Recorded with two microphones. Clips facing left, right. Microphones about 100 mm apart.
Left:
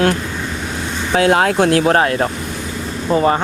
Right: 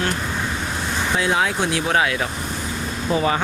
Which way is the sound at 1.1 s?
60° left (ahead or behind).